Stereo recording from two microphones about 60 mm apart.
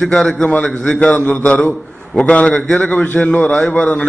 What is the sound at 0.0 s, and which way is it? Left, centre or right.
A man's voice, centre.